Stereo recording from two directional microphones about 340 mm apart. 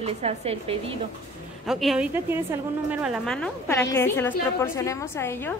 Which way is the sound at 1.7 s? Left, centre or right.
Centre.